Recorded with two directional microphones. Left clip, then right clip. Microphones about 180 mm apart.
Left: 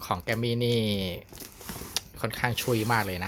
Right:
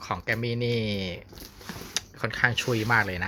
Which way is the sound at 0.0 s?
25° left (ahead or behind).